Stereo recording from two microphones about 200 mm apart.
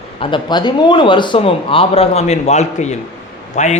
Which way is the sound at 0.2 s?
25° left (ahead or behind).